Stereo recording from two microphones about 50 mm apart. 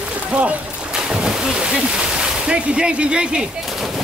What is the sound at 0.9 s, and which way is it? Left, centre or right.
Speech, centre.